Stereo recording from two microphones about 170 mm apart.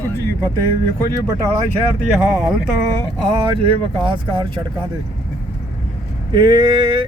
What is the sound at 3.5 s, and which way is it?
Speech, 30° right (ahead or behind).